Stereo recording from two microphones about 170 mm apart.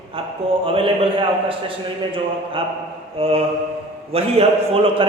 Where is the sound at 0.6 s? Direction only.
35° right (ahead or behind).